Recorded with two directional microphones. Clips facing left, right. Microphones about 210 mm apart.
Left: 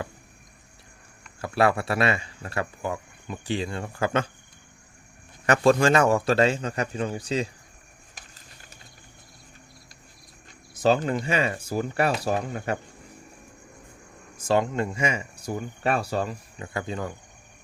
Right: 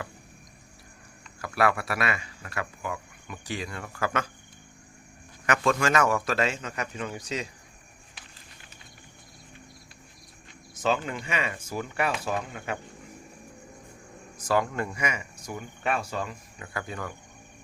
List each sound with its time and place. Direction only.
1.4 s a man's voice: 25° left (ahead or behind)
5.5 s a man's voice: 30° left (ahead or behind)
10.8 s a man's voice: 35° left (ahead or behind)
14.3 s a man's voice: 25° left (ahead or behind)